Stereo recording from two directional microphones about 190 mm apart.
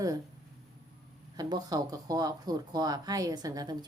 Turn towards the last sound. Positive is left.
turn(degrees=-20)  # may be behind; listen again after turning